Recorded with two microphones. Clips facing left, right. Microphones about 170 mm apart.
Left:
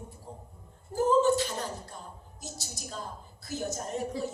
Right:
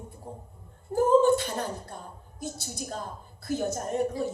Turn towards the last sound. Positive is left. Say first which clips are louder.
# right 5 dB
turn(degrees=-55)  # may be behind; listen again after turning